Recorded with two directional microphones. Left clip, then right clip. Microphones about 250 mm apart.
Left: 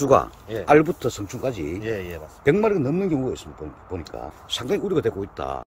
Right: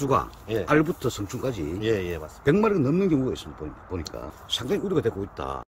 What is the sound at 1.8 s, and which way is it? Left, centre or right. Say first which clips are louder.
Speech: right 6 dB; right.